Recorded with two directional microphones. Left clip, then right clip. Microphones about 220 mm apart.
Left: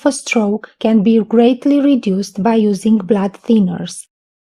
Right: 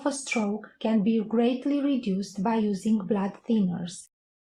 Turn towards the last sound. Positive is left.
turn(degrees=50)  # may be behind; listen again after turning